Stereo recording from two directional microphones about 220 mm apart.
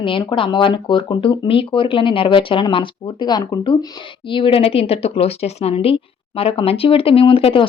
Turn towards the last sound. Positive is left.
turn(degrees=25)  # may be behind; listen again after turning